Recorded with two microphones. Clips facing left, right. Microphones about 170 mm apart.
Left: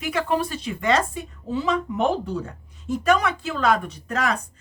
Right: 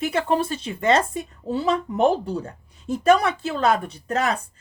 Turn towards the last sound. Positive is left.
turn(degrees=-30)  # may be behind; listen again after turning